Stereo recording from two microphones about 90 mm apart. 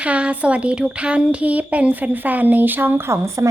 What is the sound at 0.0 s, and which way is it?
Speech, 15° right (ahead or behind).